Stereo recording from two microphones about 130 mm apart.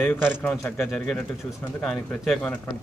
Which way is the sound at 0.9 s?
5° left (ahead or behind).